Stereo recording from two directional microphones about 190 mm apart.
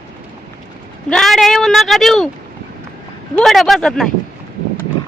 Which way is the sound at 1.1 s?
Centre (ahead or behind).